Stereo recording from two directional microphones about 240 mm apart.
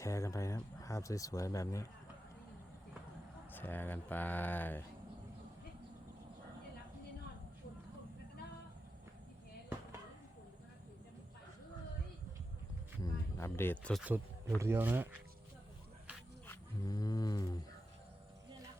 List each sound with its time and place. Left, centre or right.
0.0 s speech: centre
3.5 s speech: centre
13.0 s cricket: centre
14.0 s speech: centre
16.5 s a sound: centre